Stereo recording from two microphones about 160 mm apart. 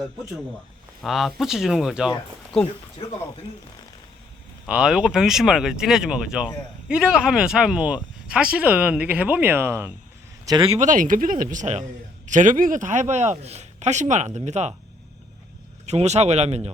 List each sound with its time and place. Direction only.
1.0 s speech: centre (ahead or behind)
4.6 s speech: 5° right (ahead or behind)
10.4 s speech: 25° right (ahead or behind)
10.7 s speech: 50° right (ahead or behind)
15.9 s speech: 45° right (ahead or behind)